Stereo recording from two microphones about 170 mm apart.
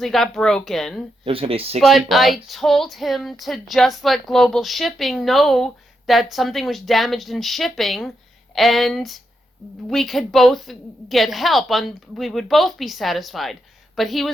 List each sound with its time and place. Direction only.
0.0 s a woman's voice: centre (ahead or behind)
1.2 s speech: 35° right (ahead or behind)
1.8 s a woman's voice: centre (ahead or behind)